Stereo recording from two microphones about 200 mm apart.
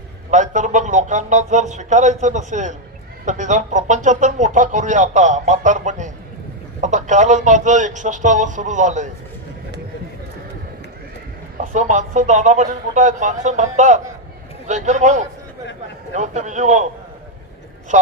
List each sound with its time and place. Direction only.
0.3 s speech: 35° right (ahead or behind)
11.6 s speech: 35° right (ahead or behind)